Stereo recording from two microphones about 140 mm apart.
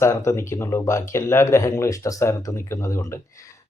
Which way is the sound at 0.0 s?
20° left (ahead or behind).